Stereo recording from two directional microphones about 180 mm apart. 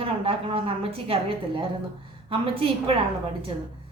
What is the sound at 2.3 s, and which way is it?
Speech, 30° right (ahead or behind).